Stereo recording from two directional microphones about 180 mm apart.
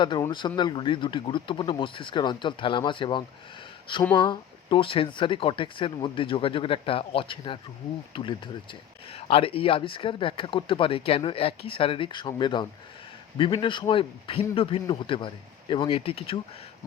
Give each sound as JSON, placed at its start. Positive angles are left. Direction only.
{"t": 0.0, "sound": "speech", "side_deg": 25}